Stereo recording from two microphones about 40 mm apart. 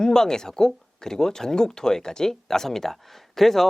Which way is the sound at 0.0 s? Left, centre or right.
Centre.